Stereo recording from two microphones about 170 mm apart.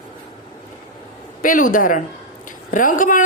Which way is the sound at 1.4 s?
50° left (ahead or behind).